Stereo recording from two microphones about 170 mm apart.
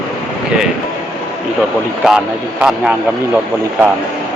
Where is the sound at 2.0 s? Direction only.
5° right (ahead or behind).